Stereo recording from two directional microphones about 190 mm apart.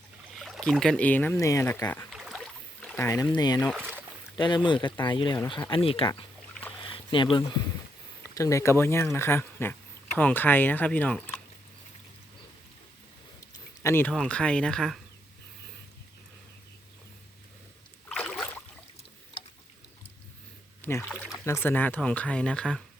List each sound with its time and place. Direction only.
0.3 s speech: centre (ahead or behind)
2.1 s rowboat: 5° right (ahead or behind)
3.0 s speech: 15° left (ahead or behind)
3.8 s rowboat: 10° right (ahead or behind)
4.4 s speech: 25° left (ahead or behind)
6.5 s a sound: 10° left (ahead or behind)
6.8 s a sound: 25° left (ahead or behind)
8.2 s speech: 15° left (ahead or behind)
13.8 s speech: 10° left (ahead or behind)
18.1 s rowboat: 5° left (ahead or behind)
20.8 s speech: 10° left (ahead or behind)